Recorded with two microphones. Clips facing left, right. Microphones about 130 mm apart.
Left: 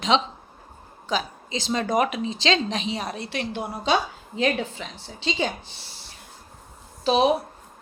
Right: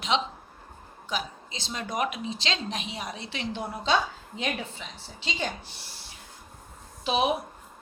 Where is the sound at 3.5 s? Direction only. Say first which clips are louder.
Left 3 dB; 15° left (ahead or behind).